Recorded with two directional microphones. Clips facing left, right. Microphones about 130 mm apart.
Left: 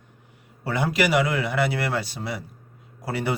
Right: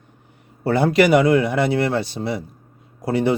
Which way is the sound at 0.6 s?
30° right (ahead or behind).